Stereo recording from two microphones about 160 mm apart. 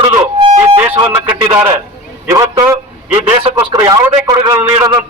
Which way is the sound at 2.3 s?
20° right (ahead or behind).